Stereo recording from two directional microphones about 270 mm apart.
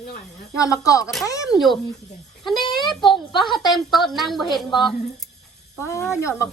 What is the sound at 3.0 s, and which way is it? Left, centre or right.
Speech, centre.